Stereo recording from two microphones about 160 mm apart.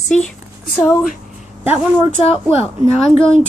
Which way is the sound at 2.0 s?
40° left (ahead or behind).